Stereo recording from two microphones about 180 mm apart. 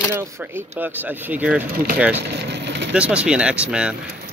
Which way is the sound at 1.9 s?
5° right (ahead or behind).